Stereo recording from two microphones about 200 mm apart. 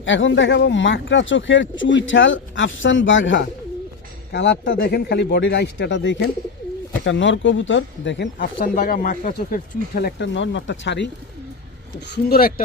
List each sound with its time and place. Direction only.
0.0 s speech: 70° left (ahead or behind)
4.3 s a man's voice: 55° left (ahead or behind)
8.4 s speech: 45° left (ahead or behind)